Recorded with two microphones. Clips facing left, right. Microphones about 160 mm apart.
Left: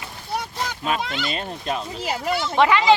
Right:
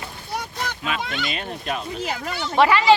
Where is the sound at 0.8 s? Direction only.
35° left (ahead or behind).